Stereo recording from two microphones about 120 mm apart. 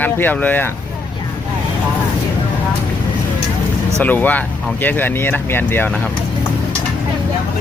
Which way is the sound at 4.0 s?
15° left (ahead or behind).